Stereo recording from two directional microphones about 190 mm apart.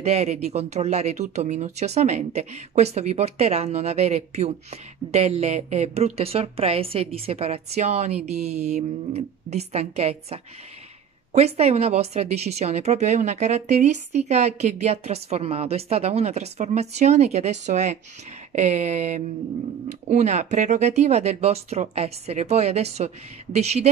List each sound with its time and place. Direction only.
0.0 s speech: 35° right (ahead or behind)